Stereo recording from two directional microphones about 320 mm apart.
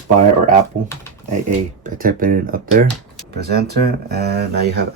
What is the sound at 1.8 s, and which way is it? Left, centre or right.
Speech, right.